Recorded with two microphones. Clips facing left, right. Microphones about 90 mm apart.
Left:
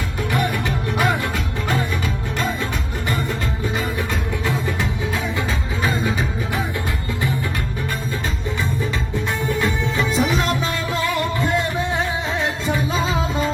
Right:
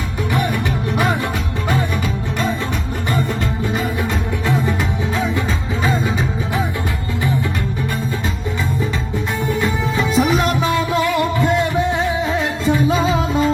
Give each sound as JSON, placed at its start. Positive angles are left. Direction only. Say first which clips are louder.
{"t": 5.8, "sound": "music", "louder": "right 2 dB", "side_deg": -15}
{"t": 10.0, "sound": "music", "louder": "right 4 dB", "side_deg": -15}
{"t": 12.6, "sound": "music", "louder": "right 9 dB", "side_deg": -20}